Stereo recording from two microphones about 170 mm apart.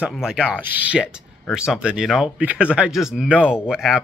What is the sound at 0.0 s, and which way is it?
Speech, 5° right (ahead or behind).